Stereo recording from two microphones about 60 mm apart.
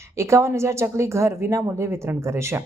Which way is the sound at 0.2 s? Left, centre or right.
Right.